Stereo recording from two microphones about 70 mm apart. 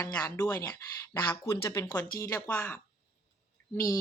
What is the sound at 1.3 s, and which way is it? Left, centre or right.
Speech, left.